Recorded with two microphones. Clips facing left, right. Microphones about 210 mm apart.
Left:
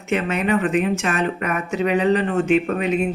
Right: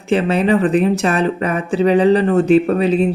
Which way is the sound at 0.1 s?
30° right (ahead or behind).